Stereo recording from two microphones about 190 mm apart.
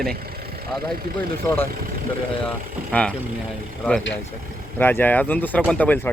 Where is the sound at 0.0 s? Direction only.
55° right (ahead or behind).